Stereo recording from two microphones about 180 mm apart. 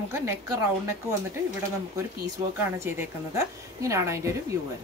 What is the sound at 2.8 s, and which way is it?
Speech, 15° right (ahead or behind).